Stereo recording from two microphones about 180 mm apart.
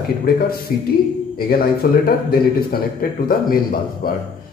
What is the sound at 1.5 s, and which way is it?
A man's voice, 55° left (ahead or behind).